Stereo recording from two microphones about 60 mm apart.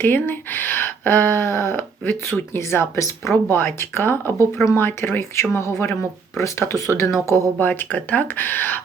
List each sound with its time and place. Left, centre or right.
0.0 s speech: left
3.5 s speech: left
6.7 s speech: left
7.3 s speech: right
7.6 s speech: left